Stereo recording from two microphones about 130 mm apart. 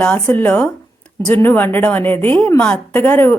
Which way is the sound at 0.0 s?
10° left (ahead or behind).